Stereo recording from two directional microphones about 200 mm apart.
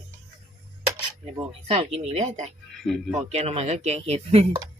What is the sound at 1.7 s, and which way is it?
Speech, 30° right (ahead or behind).